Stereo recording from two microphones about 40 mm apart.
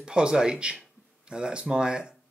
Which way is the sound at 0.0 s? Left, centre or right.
Right.